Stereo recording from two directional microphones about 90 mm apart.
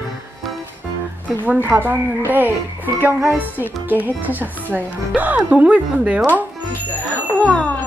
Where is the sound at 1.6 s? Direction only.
20° right (ahead or behind).